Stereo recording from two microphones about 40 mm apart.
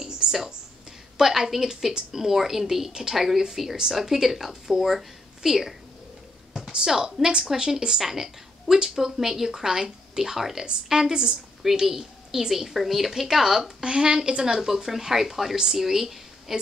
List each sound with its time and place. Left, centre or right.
0.0 s a sound: centre
1.1 s a woman's voice: centre
6.5 s a woman's voice: centre
15.5 s a woman's voice: centre
15.8 s speech: centre